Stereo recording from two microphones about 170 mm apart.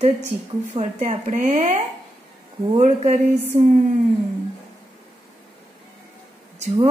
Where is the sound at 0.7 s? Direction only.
45° right (ahead or behind).